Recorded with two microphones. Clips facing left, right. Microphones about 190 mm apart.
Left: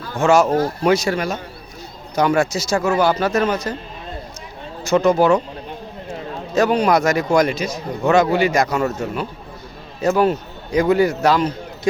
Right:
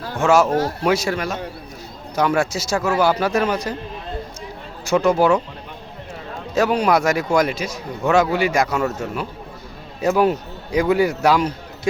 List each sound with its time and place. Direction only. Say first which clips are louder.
0.2 s a man's voice: left 1 dB; 5° right (ahead or behind)
5.0 s a man's voice: left 1 dB; 5° right (ahead or behind)
6.5 s a man's voice: left 1 dB; 5° right (ahead or behind)
10.0 s a man's voice: left 1 dB; 15° right (ahead or behind)